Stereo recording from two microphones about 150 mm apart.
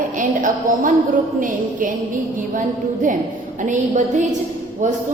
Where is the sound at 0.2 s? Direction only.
60° right (ahead or behind).